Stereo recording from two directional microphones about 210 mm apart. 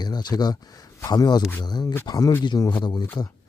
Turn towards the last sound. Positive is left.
turn(degrees=20)  # may be behind; listen again after turning